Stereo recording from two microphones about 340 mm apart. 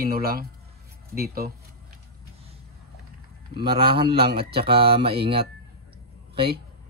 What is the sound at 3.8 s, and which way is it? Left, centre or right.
Speech, centre.